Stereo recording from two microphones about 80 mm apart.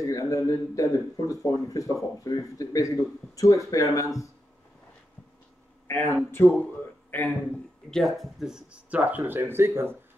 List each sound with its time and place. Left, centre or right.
0.0 s a man's voice: left
5.9 s speech: left
7.9 s speech: centre
8.9 s speech: right